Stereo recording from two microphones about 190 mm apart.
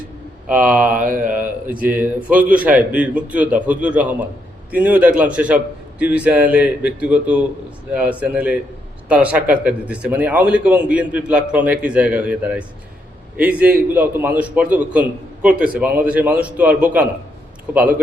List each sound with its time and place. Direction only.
0.4 s a man's voice: 10° right (ahead or behind)
0.9 s speech: 45° right (ahead or behind)
1.6 s a man's voice: 10° right (ahead or behind)